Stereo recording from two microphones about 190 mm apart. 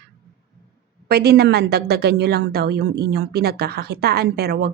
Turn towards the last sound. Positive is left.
turn(degrees=-55)  # may be behind; listen again after turning